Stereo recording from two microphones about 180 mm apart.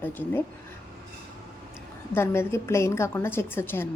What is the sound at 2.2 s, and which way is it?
A woman's voice, 15° left (ahead or behind).